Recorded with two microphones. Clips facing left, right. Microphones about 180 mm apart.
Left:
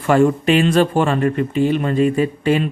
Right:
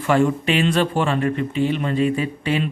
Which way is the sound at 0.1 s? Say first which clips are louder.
Left 4 dB; 45° left (ahead or behind).